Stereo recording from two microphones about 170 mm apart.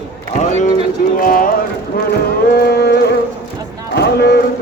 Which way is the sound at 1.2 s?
55° left (ahead or behind).